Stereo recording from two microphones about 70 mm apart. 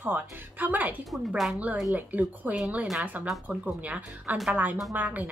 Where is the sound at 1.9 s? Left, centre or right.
Right.